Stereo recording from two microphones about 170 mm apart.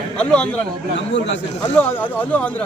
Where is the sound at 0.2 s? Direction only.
5° left (ahead or behind).